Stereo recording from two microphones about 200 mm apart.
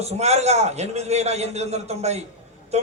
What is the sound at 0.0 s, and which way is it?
A man's voice, 30° right (ahead or behind).